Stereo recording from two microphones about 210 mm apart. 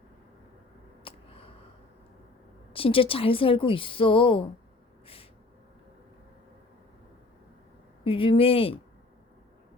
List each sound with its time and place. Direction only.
1.0 s a sound: 25° left (ahead or behind)
2.7 s a woman's voice: 25° left (ahead or behind)
8.0 s a woman's voice: 25° left (ahead or behind)